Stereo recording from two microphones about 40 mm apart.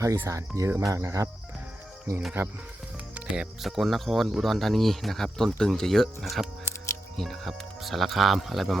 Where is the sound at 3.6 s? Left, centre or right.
Centre.